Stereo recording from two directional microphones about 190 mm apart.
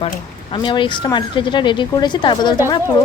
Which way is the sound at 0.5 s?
25° left (ahead or behind).